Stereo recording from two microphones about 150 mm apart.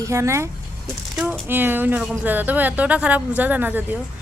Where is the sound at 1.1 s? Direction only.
5° right (ahead or behind).